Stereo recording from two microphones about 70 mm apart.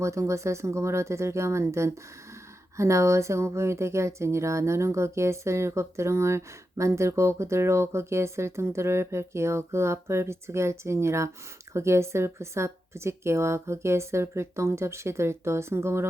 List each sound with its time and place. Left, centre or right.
0.0 s speech: right